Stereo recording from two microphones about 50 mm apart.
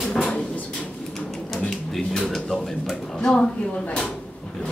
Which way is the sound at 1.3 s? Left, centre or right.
Centre.